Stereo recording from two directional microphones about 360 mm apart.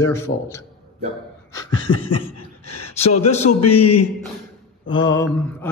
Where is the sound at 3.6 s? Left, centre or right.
Left.